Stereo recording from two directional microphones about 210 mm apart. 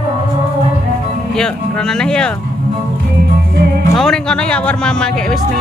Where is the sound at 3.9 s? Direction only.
Centre (ahead or behind).